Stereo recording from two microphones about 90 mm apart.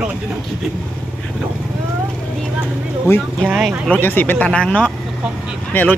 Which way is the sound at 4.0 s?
20° left (ahead or behind).